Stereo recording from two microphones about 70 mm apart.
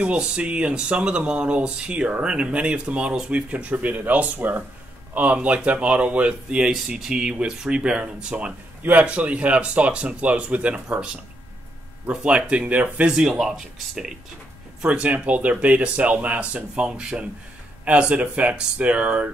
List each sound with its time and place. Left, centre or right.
0.0 s speech: centre
12.1 s speech: centre